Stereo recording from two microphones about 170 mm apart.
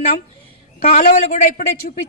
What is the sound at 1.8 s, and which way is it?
Speech, 50° left (ahead or behind).